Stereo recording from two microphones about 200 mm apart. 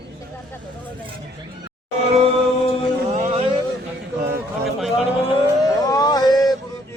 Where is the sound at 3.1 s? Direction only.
30° right (ahead or behind).